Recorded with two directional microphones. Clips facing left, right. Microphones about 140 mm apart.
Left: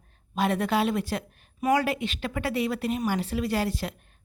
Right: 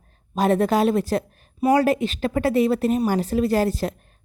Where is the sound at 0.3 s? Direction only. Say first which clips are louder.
Right 6 dB; 40° right (ahead or behind).